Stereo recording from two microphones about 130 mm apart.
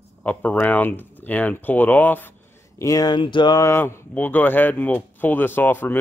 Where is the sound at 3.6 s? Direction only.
20° left (ahead or behind).